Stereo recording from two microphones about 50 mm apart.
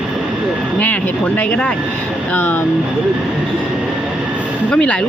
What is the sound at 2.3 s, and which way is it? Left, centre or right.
Speech, left.